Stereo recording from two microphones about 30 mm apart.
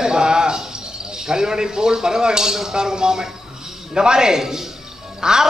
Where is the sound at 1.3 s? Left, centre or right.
Right.